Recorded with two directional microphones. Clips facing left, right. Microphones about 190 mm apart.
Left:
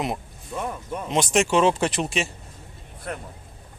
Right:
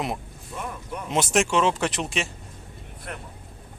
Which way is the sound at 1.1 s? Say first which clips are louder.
Left 1 dB; 5° right (ahead or behind).